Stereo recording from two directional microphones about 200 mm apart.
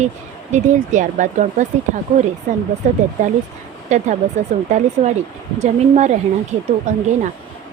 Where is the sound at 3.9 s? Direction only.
35° right (ahead or behind).